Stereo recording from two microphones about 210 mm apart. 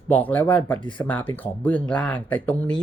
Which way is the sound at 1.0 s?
10° left (ahead or behind).